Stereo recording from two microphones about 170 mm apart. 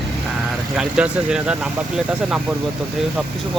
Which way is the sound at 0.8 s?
5° right (ahead or behind).